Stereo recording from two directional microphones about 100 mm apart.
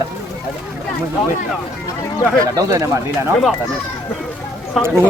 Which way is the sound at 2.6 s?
35° right (ahead or behind).